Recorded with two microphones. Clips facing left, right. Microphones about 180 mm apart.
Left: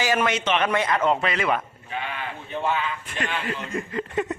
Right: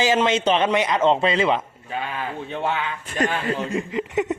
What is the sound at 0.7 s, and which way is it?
Speech, 20° right (ahead or behind).